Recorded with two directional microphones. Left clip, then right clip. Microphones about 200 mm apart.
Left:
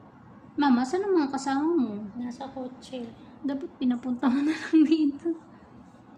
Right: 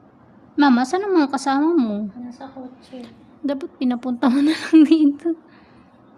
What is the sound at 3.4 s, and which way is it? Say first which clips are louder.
A woman's voice: right 6 dB; 55° right (ahead or behind).